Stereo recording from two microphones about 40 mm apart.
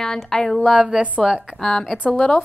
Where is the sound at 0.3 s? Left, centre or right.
Centre.